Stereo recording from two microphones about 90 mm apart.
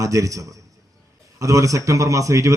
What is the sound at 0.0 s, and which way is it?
A man's voice, 35° right (ahead or behind).